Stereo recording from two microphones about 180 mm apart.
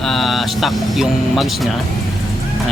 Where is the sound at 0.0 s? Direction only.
Centre (ahead or behind).